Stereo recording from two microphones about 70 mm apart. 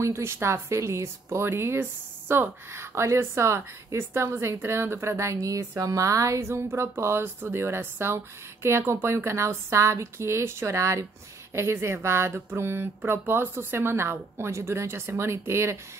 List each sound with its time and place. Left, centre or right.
0.0 s speech: right